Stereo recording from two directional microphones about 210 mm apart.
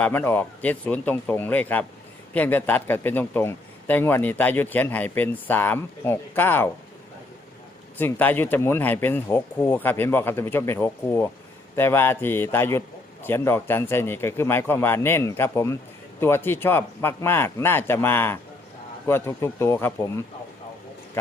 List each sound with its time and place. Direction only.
0.0 s a man's voice: 10° left (ahead or behind)
7.9 s a man's voice: 10° left (ahead or behind)